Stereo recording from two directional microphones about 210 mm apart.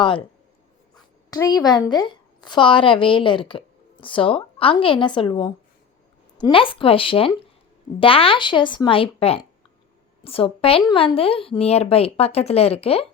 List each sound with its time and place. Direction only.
1.3 s speech: 15° left (ahead or behind)